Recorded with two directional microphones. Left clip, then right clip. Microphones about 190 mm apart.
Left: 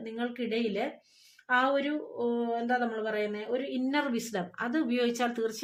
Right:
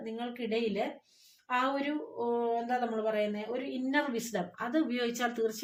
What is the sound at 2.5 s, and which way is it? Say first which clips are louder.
Speech: left 2 dB; 30° left (ahead or behind).